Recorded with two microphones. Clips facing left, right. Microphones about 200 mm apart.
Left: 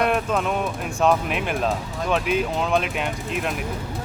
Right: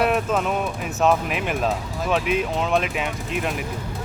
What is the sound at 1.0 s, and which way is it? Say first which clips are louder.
Speech: even; centre (ahead or behind).